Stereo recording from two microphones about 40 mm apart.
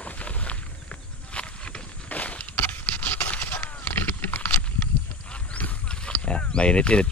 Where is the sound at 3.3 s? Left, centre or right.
Left.